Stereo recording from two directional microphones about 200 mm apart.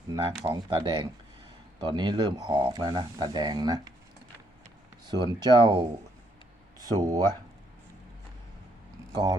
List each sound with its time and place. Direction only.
0.1 s speech: 15° right (ahead or behind)
5.0 s speech: 20° right (ahead or behind)